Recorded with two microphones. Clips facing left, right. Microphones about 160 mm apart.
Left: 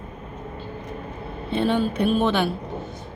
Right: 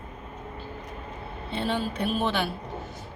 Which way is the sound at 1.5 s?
15° left (ahead or behind).